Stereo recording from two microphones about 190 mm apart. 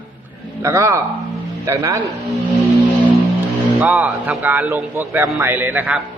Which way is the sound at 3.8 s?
5° right (ahead or behind).